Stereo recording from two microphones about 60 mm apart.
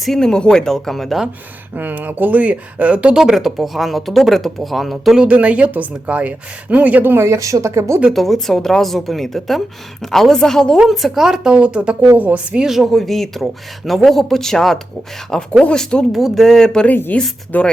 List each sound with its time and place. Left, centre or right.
0.0 s speech: centre
1.7 s a woman's voice: right
3.3 s a woman's voice: centre
5.2 s a woman's voice: right
7.3 s speech: right
8.1 s a woman's voice: centre; by 12.6 s right
12.6 s a woman's voice: centre
16.1 s speech: centre
17.1 s speech: left